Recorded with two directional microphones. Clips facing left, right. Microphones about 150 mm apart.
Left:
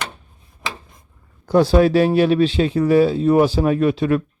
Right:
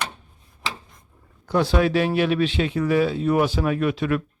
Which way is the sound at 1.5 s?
35° left (ahead or behind).